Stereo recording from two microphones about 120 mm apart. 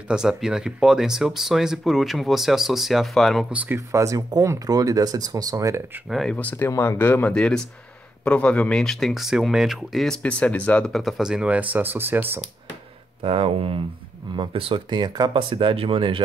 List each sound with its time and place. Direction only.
0.1 s speech: 5° right (ahead or behind)
3.5 s speech: 10° right (ahead or behind)
3.9 s speech: 25° right (ahead or behind)
6.0 s speech: centre (ahead or behind)
6.3 s speech: 15° left (ahead or behind); by 12.4 s 15° right (ahead or behind)
13.2 s speech: 50° right (ahead or behind)